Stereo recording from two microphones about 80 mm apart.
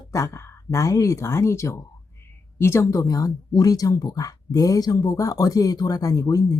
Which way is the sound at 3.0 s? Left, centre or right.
Left.